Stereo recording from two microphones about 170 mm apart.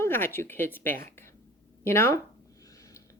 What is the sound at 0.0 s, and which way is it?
Speech, 15° left (ahead or behind).